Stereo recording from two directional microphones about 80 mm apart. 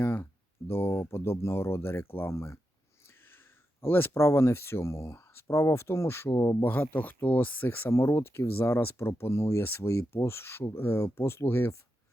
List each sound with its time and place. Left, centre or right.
0.0 s a sound: left
0.7 s speech: left
6.6 s speech: left